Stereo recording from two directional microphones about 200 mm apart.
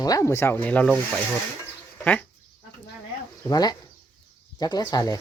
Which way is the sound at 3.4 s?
20° left (ahead or behind).